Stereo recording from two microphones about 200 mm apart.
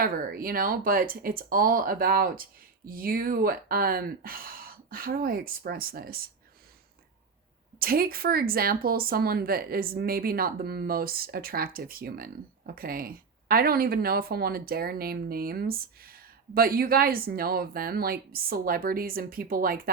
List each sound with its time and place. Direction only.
0.0 s speech: 45° right (ahead or behind)
7.8 s speech: 50° right (ahead or behind)